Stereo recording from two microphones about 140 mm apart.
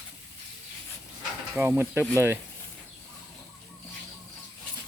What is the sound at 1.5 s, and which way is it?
Speech, 10° right (ahead or behind).